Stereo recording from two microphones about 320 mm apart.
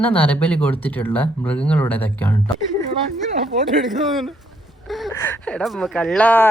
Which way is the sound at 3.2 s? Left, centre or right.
Right.